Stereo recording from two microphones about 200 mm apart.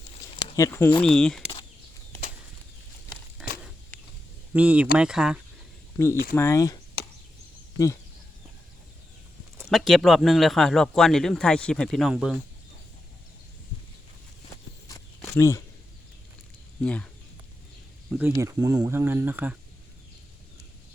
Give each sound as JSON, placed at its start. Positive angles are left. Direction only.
{"t": 0.5, "sound": "speech", "side_deg": 15}
{"t": 3.9, "sound": "a sound", "side_deg": 10}
{"t": 4.5, "sound": "speech", "side_deg": -5}
{"t": 6.3, "sound": "speech", "side_deg": 15}
{"t": 9.6, "sound": "speech", "side_deg": 0}
{"t": 14.8, "sound": "walk", "side_deg": 15}
{"t": 16.8, "sound": "speech", "side_deg": 5}
{"t": 18.1, "sound": "speech", "side_deg": -15}